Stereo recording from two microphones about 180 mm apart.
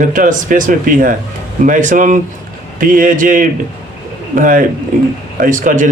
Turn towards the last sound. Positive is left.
turn(degrees=-45)  # may be behind; listen again after turning